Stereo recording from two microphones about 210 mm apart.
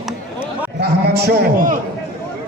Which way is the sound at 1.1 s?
50° right (ahead or behind).